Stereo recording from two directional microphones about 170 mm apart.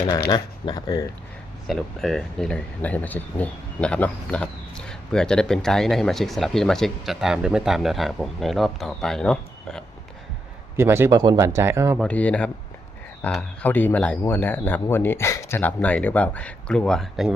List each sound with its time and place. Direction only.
0.3 s speech: 25° left (ahead or behind)
1.6 s speech: centre (ahead or behind)
10.8 s speech: 15° right (ahead or behind)
11.9 s speech: 10° left (ahead or behind)